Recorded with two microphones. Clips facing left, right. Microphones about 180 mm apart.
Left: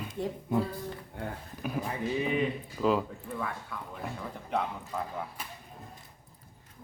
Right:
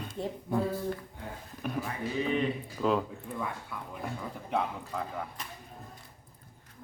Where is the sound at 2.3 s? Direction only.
5° left (ahead or behind).